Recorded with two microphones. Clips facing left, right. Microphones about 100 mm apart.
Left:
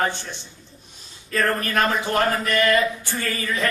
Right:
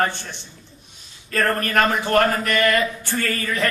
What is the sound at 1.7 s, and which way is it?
Speech, 55° right (ahead or behind).